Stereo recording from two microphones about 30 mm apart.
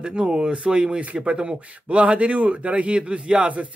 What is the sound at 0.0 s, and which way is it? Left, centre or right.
Speech, right.